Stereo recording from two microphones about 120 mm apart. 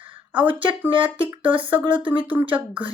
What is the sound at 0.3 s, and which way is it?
Speech, 40° right (ahead or behind).